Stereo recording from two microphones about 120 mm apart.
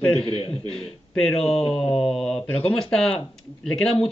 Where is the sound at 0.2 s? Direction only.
50° left (ahead or behind).